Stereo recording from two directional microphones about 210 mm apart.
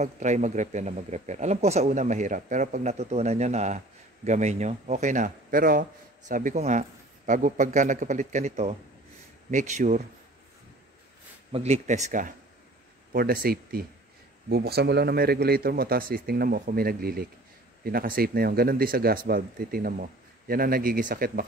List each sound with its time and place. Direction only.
0.0 s speech: 35° right (ahead or behind)
11.5 s speech: 30° right (ahead or behind)